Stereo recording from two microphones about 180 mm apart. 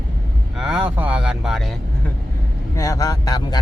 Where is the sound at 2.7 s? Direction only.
15° left (ahead or behind).